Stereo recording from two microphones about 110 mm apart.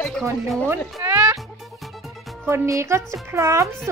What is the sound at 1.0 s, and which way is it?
Music, 15° right (ahead or behind).